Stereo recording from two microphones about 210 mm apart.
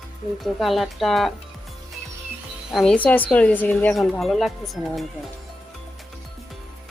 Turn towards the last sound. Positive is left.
turn(degrees=0)  # may be behind; listen again after turning